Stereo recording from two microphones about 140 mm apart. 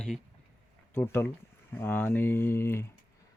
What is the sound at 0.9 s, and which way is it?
Speech, 15° left (ahead or behind).